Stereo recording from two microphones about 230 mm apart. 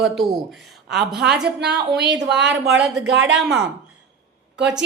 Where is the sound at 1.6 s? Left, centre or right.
Right.